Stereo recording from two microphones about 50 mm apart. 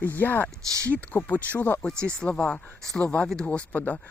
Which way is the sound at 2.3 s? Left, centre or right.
Left.